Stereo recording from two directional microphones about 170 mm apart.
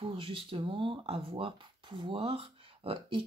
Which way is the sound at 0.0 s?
30° right (ahead or behind).